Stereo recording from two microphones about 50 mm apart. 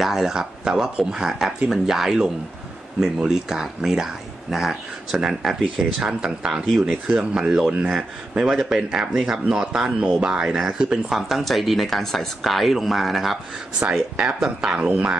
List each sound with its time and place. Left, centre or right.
0.0 s speech: centre
11.1 s speech: centre
14.1 s speech: centre
14.8 s speech: right